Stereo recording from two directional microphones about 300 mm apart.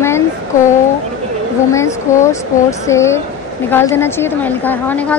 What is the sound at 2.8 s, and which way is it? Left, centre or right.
A woman's voice, centre.